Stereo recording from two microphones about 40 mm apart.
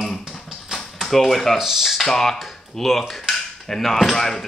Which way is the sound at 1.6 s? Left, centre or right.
Centre.